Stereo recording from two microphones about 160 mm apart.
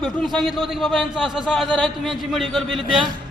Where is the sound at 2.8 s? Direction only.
30° right (ahead or behind).